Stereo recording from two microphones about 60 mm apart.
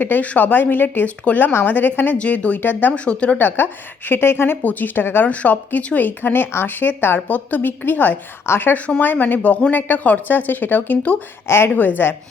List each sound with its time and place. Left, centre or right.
0.0 s a woman's voice: left
4.6 s speech: left
5.3 s a woman's voice: left
11.4 s a woman's voice: left
11.7 s speech: left